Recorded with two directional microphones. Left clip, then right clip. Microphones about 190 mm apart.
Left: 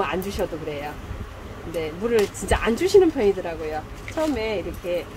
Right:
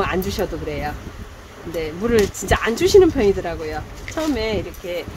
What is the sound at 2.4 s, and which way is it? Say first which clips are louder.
Speech: right 4 dB; 30° right (ahead or behind).